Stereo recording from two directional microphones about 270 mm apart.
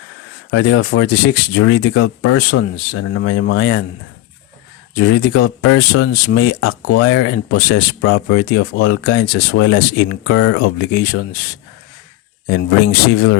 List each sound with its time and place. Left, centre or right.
0.6 s speech: left
4.9 s speech: left
5.6 s speech: left
6.2 s speech: left
6.6 s speech: left
12.5 s speech: left